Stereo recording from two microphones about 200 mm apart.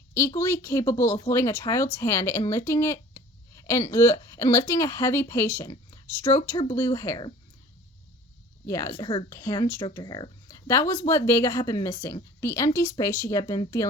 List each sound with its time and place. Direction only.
0.1 s speech: 15° left (ahead or behind)
8.6 s speech: 15° left (ahead or behind)